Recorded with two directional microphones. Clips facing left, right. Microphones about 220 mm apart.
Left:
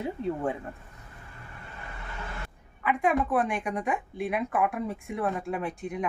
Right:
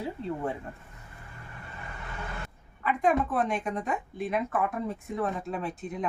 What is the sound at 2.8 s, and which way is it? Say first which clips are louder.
A woman's voice: even; 10° left (ahead or behind).